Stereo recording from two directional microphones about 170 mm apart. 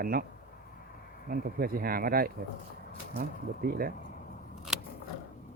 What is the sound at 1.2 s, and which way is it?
Speech, 60° right (ahead or behind).